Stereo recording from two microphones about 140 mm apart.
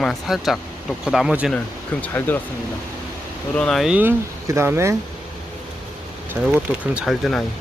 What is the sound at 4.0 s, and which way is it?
Speech, 15° right (ahead or behind).